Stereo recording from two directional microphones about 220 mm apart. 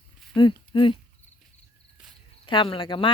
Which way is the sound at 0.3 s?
20° left (ahead or behind).